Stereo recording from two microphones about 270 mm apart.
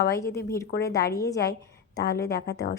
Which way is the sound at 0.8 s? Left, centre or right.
Centre.